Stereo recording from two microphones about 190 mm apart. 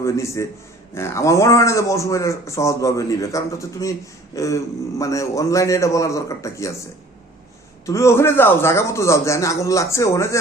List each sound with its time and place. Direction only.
0.0 s a man's voice: 15° left (ahead or behind)
7.9 s a man's voice: 15° left (ahead or behind)